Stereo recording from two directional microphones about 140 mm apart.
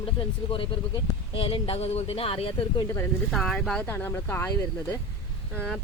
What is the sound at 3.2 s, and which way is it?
Speech, centre (ahead or behind).